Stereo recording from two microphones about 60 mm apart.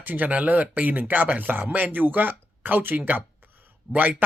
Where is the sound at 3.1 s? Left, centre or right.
Right.